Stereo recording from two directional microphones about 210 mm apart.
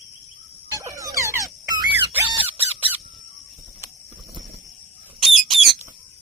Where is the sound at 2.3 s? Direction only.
25° right (ahead or behind).